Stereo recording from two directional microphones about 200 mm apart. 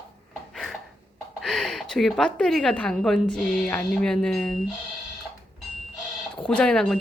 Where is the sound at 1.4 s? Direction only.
Centre (ahead or behind).